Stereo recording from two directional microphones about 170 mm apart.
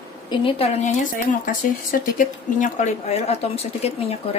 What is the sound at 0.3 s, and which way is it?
Speech, 30° left (ahead or behind).